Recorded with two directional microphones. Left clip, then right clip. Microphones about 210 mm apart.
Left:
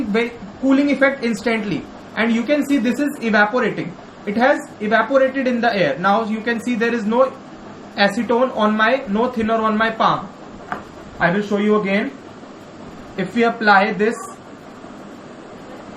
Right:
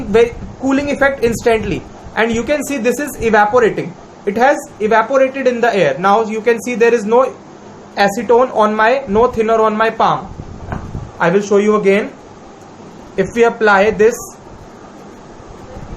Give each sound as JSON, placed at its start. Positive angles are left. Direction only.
{"t": 0.7, "sound": "a man's voice", "side_deg": -50}
{"t": 11.2, "sound": "a man's voice", "side_deg": -45}
{"t": 13.1, "sound": "a man's voice", "side_deg": -50}